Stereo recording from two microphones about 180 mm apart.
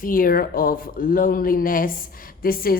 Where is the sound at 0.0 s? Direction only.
50° left (ahead or behind).